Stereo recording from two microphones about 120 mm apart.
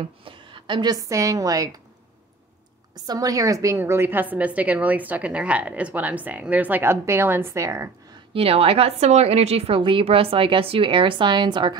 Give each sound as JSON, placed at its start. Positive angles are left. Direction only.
{"t": 0.2, "sound": "a woman's voice", "side_deg": -45}
{"t": 3.0, "sound": "a woman's voice", "side_deg": -30}
{"t": 8.3, "sound": "a woman's voice", "side_deg": -55}
{"t": 9.8, "sound": "a woman's voice", "side_deg": -45}